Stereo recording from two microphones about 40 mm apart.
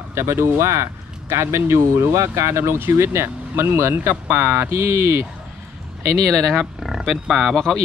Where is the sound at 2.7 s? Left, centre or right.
Right.